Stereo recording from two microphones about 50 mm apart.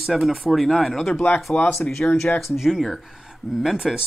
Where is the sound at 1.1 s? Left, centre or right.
Left.